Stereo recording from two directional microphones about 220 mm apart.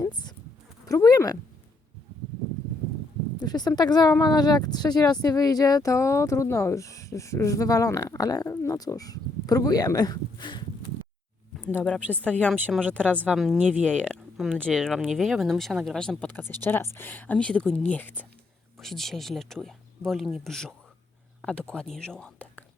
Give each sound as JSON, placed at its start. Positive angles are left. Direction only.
{"t": 0.0, "sound": "a sound", "side_deg": 20}
{"t": 0.9, "sound": "speech", "side_deg": 15}
{"t": 3.4, "sound": "speech", "side_deg": 20}
{"t": 12.1, "sound": "speech", "side_deg": 5}